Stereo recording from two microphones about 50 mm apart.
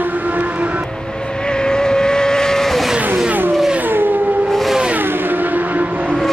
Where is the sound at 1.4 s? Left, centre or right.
Centre.